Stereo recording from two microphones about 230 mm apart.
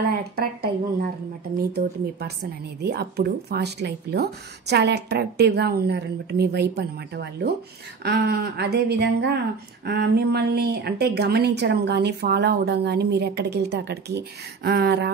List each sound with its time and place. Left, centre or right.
0.1 s a woman's voice: right